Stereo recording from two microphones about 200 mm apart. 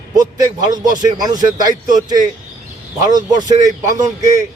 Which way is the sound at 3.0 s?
20° right (ahead or behind).